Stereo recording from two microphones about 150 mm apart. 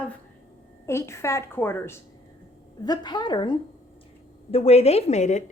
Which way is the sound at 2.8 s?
30° left (ahead or behind).